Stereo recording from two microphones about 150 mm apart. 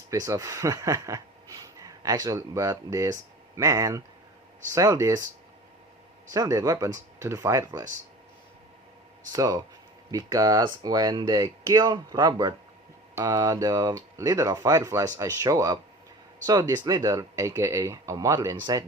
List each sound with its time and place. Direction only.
0.1 s speech: 20° right (ahead or behind)
6.3 s speech: 25° right (ahead or behind)
9.3 s speech: 25° right (ahead or behind)